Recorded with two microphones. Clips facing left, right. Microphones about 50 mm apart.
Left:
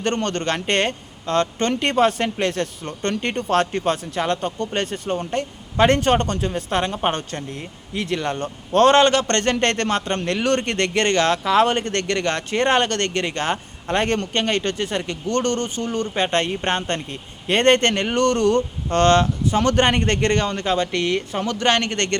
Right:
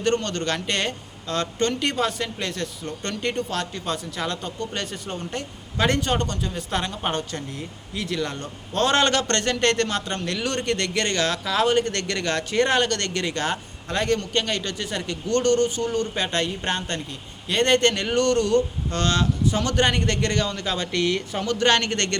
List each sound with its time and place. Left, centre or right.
0.0 s speech: left
6.7 s a man's voice: left
9.0 s a man's voice: left
13.9 s a man's voice: left
21.3 s a man's voice: centre